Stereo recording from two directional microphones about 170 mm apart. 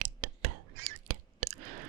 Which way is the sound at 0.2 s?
50° right (ahead or behind).